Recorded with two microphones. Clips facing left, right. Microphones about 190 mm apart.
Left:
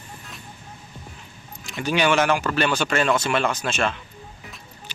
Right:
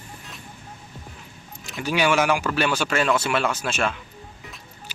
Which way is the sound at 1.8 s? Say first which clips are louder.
Left 1 dB; 5° right (ahead or behind).